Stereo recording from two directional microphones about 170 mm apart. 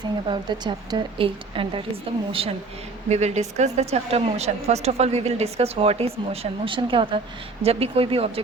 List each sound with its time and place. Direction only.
0.3 s a woman's voice: 25° right (ahead or behind)